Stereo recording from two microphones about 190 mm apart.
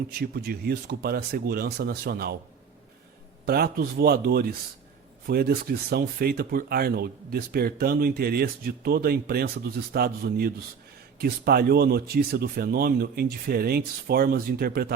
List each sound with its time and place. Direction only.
0.2 s speech: 55° right (ahead or behind)
3.4 s speech: 55° right (ahead or behind)